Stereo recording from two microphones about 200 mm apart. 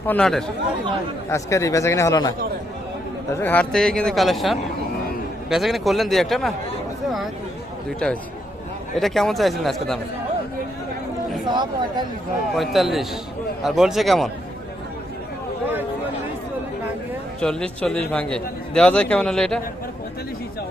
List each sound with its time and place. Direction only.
0.0 s a man's voice: 5° left (ahead or behind)
1.3 s speech: 15° left (ahead or behind)
3.4 s a man's voice: 5° left (ahead or behind)
7.9 s a man's voice: 5° left (ahead or behind)
11.4 s speech: 20° right (ahead or behind)
12.5 s a man's voice: centre (ahead or behind)
17.4 s a man's voice: 5° left (ahead or behind)